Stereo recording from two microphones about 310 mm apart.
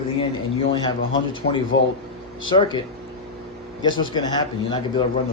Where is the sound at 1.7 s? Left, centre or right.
Left.